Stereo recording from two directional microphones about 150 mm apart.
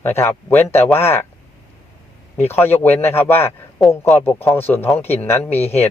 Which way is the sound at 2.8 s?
15° left (ahead or behind).